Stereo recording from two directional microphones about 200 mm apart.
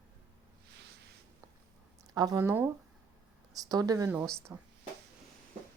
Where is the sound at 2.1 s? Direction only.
20° right (ahead or behind).